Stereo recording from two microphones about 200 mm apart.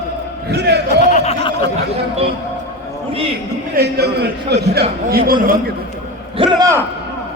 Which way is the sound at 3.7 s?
55° right (ahead or behind).